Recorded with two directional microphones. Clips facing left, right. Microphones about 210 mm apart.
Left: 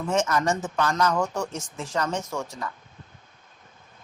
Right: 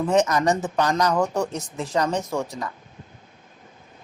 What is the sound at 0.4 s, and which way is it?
Speech, 35° right (ahead or behind).